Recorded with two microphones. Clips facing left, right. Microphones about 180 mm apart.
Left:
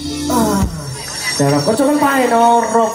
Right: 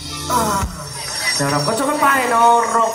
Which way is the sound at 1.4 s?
30° left (ahead or behind).